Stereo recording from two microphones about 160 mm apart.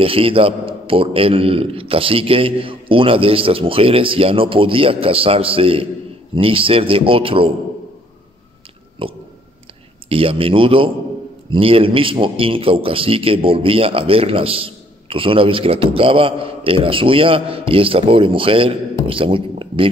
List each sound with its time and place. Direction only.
0.0 s a man's voice: 35° right (ahead or behind)
9.0 s a man's voice: 35° right (ahead or behind)